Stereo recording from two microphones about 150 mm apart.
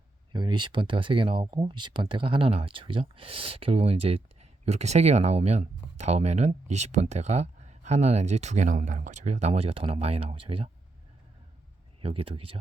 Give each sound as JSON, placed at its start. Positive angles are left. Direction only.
{"t": 0.3, "sound": "speech", "side_deg": -30}
{"t": 12.0, "sound": "speech", "side_deg": -40}